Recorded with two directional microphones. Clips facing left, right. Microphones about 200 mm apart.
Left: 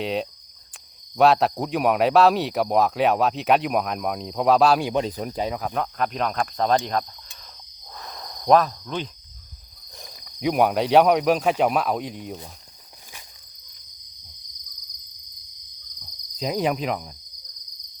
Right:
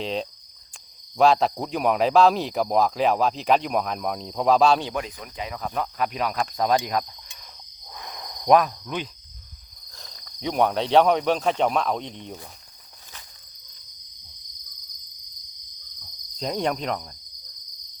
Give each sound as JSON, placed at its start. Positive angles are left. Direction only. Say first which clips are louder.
{"t": 0.0, "sound": "speech", "louder": "left 2 dB", "side_deg": 5}
{"t": 4.9, "sound": "speech", "louder": "left 7 dB", "side_deg": 35}
{"t": 5.5, "sound": "cricket", "louder": "left 1 dB", "side_deg": 0}
{"t": 9.9, "sound": "speech", "louder": "left 3 dB", "side_deg": 15}
{"t": 16.0, "sound": "cricket", "louder": "left 2 dB", "side_deg": 5}